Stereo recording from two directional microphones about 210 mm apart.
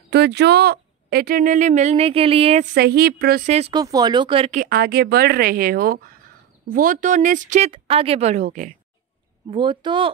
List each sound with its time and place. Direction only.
0.1 s speech: 55° right (ahead or behind); by 2.7 s 30° right (ahead or behind)
2.7 s speech: 50° right (ahead or behind)
3.7 s speech: 20° right (ahead or behind)
4.6 s speech: 45° right (ahead or behind)
9.5 s speech: 25° right (ahead or behind)